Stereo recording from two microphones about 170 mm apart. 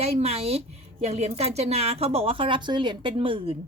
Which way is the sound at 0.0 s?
40° right (ahead or behind).